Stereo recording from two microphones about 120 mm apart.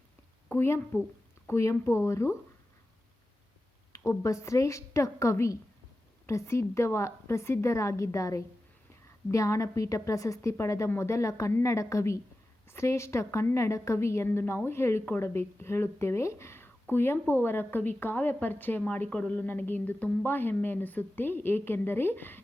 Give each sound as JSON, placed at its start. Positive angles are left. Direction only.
{"t": 0.4, "sound": "a woman's voice", "side_deg": 20}
{"t": 3.9, "sound": "a woman's voice", "side_deg": 25}